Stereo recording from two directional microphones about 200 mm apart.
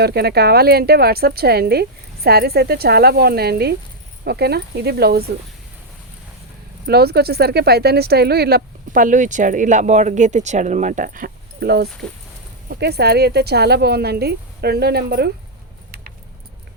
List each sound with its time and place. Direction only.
0.0 s speech: 55° right (ahead or behind)
6.8 s speech: 50° right (ahead or behind)